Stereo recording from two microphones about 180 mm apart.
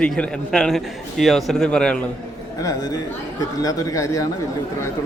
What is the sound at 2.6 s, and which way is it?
Speech, 20° left (ahead or behind).